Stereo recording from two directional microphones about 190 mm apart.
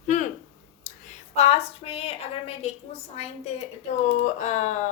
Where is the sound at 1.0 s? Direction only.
35° left (ahead or behind).